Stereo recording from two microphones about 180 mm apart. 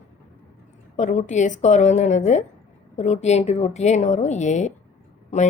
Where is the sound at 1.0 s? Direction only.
45° left (ahead or behind).